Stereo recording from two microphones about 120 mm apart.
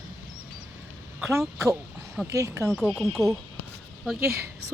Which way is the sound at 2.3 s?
25° right (ahead or behind).